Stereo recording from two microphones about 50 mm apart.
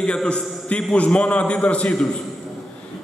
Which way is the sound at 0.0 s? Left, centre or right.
Centre.